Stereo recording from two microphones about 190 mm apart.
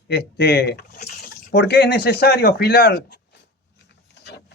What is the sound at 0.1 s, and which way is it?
Speech, 60° left (ahead or behind).